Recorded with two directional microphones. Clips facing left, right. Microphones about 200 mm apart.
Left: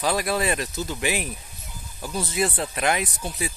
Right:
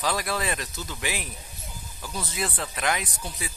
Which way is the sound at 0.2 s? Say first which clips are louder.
Left 5 dB; 15° left (ahead or behind).